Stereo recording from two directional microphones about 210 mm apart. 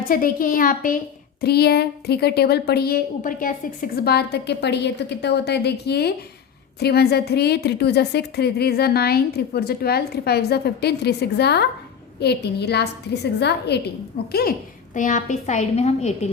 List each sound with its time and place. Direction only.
0.0 s a woman's voice: 40° left (ahead or behind)
14.9 s a woman's voice: 35° left (ahead or behind)